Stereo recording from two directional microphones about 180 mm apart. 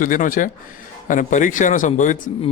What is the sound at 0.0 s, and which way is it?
Speech, 50° left (ahead or behind).